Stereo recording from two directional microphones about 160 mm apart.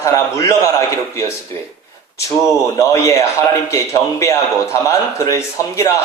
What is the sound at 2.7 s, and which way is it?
A man's voice, 20° left (ahead or behind).